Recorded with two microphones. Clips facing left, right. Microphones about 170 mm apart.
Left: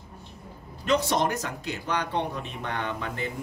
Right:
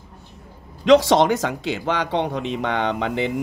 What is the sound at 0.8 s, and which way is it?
Speech, 90° right.